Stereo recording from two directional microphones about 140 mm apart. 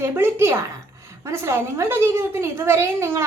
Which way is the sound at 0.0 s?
15° right (ahead or behind).